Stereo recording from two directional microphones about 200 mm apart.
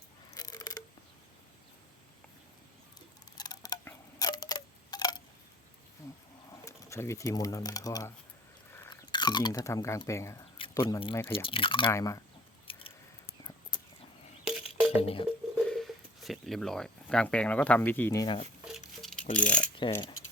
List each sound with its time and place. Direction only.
0.3 s a sound: 20° left (ahead or behind)
3.3 s tick-tock: 20° left (ahead or behind)
6.5 s speech: 15° left (ahead or behind)
11.4 s speech: 25° left (ahead or behind)
11.9 s speech: 15° left (ahead or behind)
12.7 s scissors: 25° left (ahead or behind)
14.4 s music: 5° right (ahead or behind)
14.9 s speech: 30° left (ahead or behind)
15.6 s speech: centre (ahead or behind)
19.4 s mechanisms: 5° left (ahead or behind)